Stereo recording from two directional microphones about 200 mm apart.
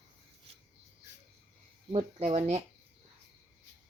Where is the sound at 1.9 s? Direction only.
30° right (ahead or behind).